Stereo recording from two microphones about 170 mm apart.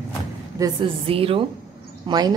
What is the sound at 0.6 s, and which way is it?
A woman's voice, 30° right (ahead or behind).